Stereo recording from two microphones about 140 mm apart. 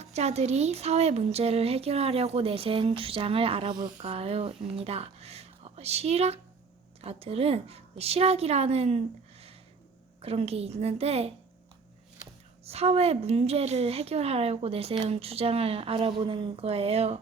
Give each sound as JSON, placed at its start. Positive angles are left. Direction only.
{"t": 0.0, "sound": "a woman's voice", "side_deg": -50}
{"t": 4.0, "sound": "a woman's voice", "side_deg": -45}
{"t": 12.6, "sound": "a woman's voice", "side_deg": -50}